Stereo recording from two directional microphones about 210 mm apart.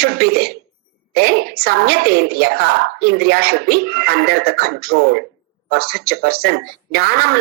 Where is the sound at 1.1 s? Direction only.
50° right (ahead or behind).